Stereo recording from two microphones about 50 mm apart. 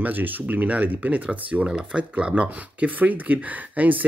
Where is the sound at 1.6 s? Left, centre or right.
Centre.